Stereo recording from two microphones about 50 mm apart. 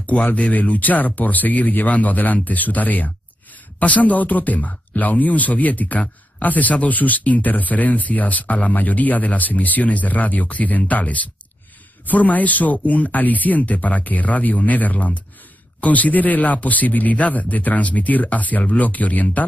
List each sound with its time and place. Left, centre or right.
0.1 s speech: left